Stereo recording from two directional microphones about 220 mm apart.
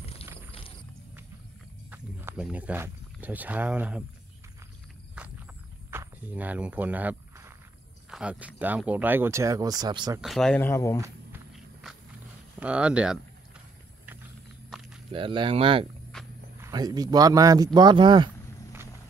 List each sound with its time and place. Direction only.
0.0 s a sound: 25° left (ahead or behind)
1.9 s speech: 5° right (ahead or behind)
5.9 s walk: 10° right (ahead or behind)
8.1 s speech: 5° right (ahead or behind)
10.2 s speech: centre (ahead or behind)
12.5 s speech: 5° right (ahead or behind)
15.0 s speech: 25° right (ahead or behind)
16.1 s roaring cats: centre (ahead or behind)
16.6 s speech: 20° right (ahead or behind)